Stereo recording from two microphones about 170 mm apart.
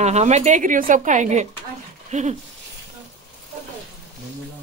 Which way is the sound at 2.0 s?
45° right (ahead or behind).